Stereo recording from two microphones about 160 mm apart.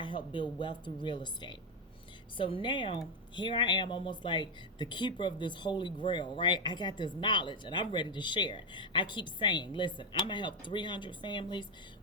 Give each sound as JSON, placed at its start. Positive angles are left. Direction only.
{"t": 0.0, "sound": "a woman's voice", "side_deg": 30}